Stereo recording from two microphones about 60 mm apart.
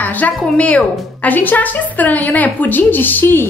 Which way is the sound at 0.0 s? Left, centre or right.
Left.